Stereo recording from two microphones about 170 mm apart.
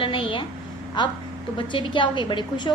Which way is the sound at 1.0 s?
25° left (ahead or behind).